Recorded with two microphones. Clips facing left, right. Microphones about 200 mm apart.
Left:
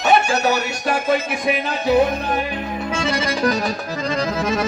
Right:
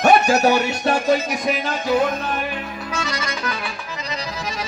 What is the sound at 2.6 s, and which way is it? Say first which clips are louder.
Accordion: left 4 dB; 25° left (ahead or behind).